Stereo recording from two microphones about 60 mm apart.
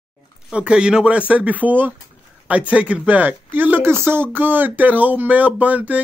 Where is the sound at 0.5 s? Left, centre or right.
Centre.